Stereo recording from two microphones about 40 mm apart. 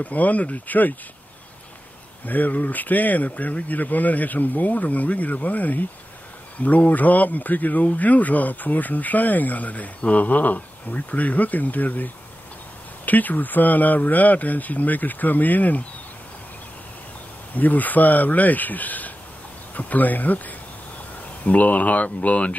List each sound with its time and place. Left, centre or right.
0.0 s speech: left
2.2 s speech: left
17.6 s speech: left